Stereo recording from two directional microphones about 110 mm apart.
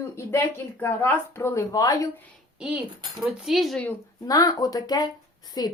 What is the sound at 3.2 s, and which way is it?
Speech, 5° right (ahead or behind).